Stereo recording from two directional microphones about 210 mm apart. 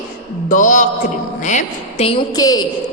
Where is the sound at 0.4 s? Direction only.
40° left (ahead or behind); by 2.6 s 20° left (ahead or behind).